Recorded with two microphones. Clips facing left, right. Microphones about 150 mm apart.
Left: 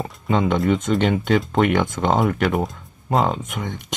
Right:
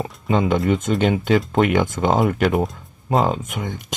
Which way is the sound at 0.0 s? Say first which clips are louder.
Right 1 dB; centre (ahead or behind).